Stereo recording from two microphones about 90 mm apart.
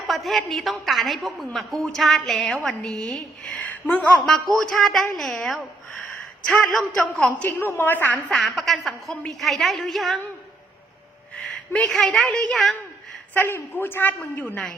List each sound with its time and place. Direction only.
0.1 s a woman's voice: centre (ahead or behind); by 4.2 s 15° left (ahead or behind)
4.3 s a woman's voice: 5° left (ahead or behind)
7.4 s a woman's voice: 20° left (ahead or behind)
8.3 s a woman's voice: 5° left (ahead or behind)
11.3 s a woman's voice: 10° left (ahead or behind)
13.3 s a woman's voice: 20° left (ahead or behind)